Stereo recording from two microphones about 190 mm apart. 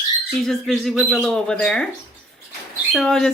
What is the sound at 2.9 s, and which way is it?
Speech, 5° left (ahead or behind).